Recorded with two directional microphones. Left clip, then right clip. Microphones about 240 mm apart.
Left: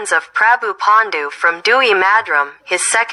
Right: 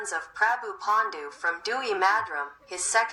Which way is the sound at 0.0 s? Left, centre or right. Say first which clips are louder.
Left 13 dB; left.